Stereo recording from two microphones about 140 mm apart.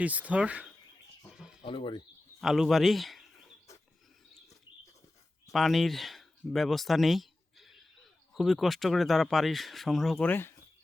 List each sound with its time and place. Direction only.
0.0 s speech: 10° right (ahead or behind)
1.6 s speech: 40° left (ahead or behind)
2.4 s speech: centre (ahead or behind)
5.5 s speech: centre (ahead or behind)